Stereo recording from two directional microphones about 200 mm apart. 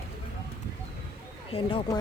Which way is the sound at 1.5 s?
25° left (ahead or behind).